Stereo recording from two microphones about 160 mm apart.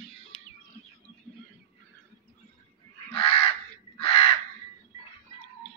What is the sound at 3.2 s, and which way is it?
Goose, 35° left (ahead or behind).